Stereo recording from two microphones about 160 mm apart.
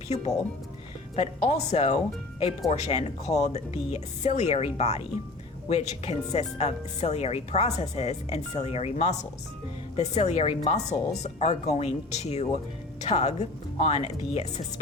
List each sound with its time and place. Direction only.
1.1 s a woman's voice: 45° left (ahead or behind)